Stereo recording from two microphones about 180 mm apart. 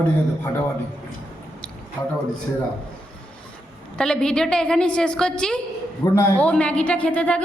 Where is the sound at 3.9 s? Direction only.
5° left (ahead or behind).